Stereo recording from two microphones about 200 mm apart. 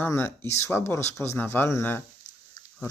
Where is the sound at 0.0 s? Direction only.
10° left (ahead or behind).